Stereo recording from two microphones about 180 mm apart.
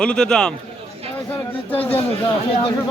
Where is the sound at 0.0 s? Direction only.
5° left (ahead or behind).